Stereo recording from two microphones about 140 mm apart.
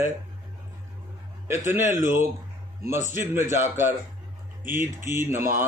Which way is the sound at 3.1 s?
15° right (ahead or behind).